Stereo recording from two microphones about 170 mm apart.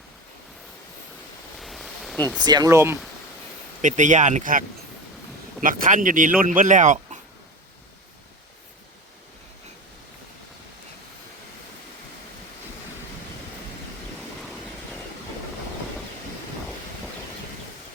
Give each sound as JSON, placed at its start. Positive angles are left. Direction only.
{"t": 1.5, "sound": "a sound", "side_deg": 0}
{"t": 2.4, "sound": "speech", "side_deg": -25}
{"t": 3.8, "sound": "speech", "side_deg": -45}
{"t": 5.6, "sound": "speech", "side_deg": -50}
{"t": 14.2, "sound": "vehicle", "side_deg": 0}